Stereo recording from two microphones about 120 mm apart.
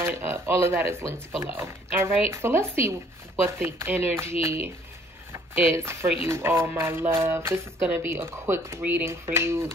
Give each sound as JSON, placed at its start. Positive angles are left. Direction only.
{"t": 0.0, "sound": "speech", "side_deg": -20}